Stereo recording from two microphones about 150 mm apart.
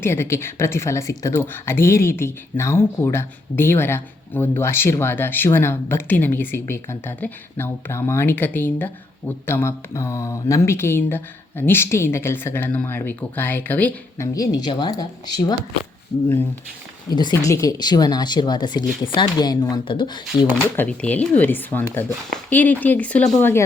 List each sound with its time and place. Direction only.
0.0 s speech: 15° left (ahead or behind)
14.3 s speech: 25° left (ahead or behind)
17.1 s speech: 30° left (ahead or behind)
20.7 s speech: 10° left (ahead or behind)